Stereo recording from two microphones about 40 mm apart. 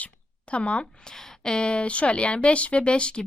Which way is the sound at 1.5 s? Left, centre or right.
Left.